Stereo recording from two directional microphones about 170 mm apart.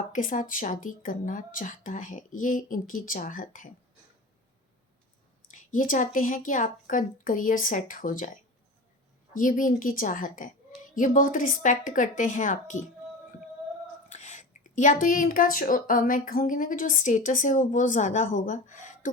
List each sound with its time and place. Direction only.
0.1 s speech: 50° left (ahead or behind)
5.5 s speech: 50° left (ahead or behind)
14.1 s speech: 45° left (ahead or behind)